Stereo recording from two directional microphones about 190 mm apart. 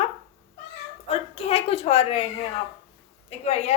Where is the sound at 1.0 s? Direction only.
30° left (ahead or behind).